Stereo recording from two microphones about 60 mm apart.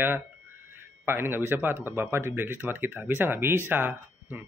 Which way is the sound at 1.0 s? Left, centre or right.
Right.